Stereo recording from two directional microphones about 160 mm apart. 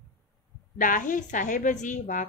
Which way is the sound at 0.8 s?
55° left (ahead or behind).